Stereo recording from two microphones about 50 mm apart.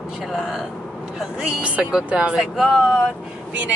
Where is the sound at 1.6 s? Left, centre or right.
Right.